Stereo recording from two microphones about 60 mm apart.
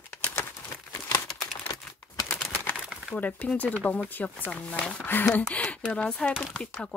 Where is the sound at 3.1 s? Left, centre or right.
Left.